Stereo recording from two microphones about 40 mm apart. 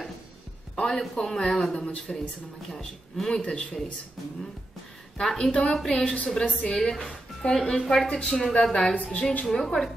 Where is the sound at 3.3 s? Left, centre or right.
Left.